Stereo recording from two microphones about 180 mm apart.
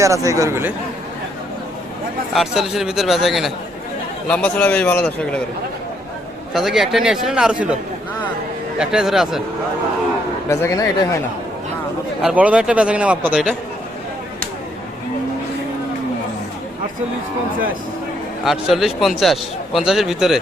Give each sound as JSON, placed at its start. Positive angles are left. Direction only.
{"t": 0.0, "sound": "speech", "side_deg": -15}
{"t": 2.3, "sound": "a man's voice", "side_deg": 0}
{"t": 6.5, "sound": "speech", "side_deg": 0}
{"t": 8.8, "sound": "speech", "side_deg": -5}
{"t": 10.5, "sound": "a man's voice", "side_deg": 15}
{"t": 12.2, "sound": "speech", "side_deg": -10}
{"t": 18.4, "sound": "speech", "side_deg": 0}